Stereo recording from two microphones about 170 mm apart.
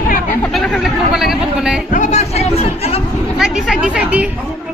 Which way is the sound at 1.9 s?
45° left (ahead or behind).